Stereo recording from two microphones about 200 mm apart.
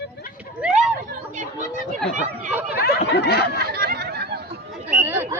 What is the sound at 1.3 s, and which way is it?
Chatter, 40° right (ahead or behind).